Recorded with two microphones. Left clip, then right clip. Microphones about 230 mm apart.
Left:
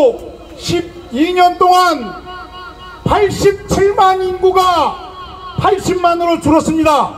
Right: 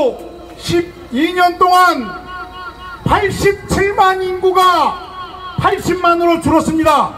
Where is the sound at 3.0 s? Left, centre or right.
Left.